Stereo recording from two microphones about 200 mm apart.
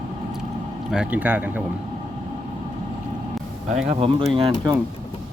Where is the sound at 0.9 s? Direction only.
5° right (ahead or behind).